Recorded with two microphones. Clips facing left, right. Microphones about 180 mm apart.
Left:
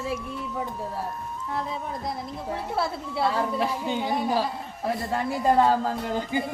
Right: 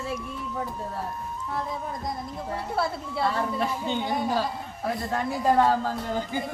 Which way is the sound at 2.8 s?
5° left (ahead or behind).